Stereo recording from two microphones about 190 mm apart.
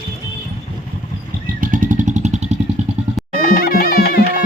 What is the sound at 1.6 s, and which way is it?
Vehicle, 45° right (ahead or behind).